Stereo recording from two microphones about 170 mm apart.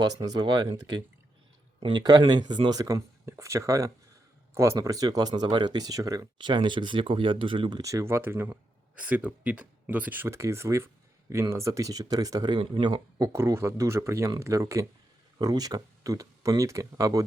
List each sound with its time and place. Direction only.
0.0 s speech: 25° right (ahead or behind)